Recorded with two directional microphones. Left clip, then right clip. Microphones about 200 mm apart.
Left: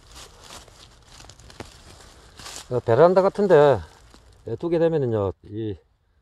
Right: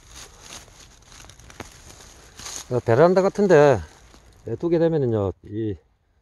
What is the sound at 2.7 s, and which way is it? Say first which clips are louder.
Speech: left 1 dB; 40° right (ahead or behind).